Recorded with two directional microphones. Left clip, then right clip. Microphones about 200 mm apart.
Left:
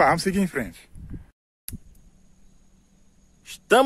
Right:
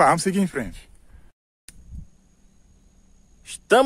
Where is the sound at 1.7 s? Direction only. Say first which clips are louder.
Left 6 dB; 55° left (ahead or behind).